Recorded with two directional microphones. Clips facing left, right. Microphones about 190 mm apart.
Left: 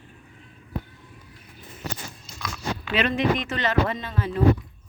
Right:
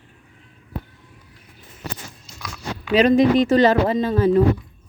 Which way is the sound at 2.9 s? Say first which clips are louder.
Right 9 dB; 40° right (ahead or behind).